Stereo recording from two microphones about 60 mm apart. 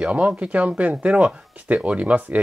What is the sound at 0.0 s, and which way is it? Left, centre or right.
Speech, right.